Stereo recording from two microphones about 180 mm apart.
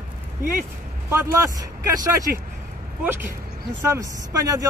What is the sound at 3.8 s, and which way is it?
Speech, 15° right (ahead or behind).